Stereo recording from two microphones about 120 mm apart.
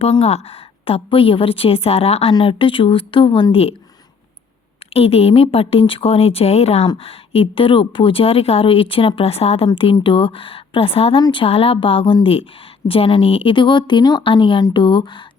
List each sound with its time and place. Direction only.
0.0 s a woman's voice: 60° left (ahead or behind)
2.3 s a woman's voice: 45° left (ahead or behind)
4.9 s a woman's voice: 55° left (ahead or behind)
9.6 s a woman's voice: 45° left (ahead or behind)